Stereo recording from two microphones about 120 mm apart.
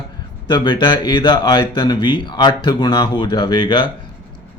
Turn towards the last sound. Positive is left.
turn(degrees=40)  # may be behind; listen again after turning